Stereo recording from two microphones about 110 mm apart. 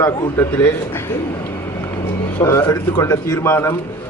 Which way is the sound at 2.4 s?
25° left (ahead or behind).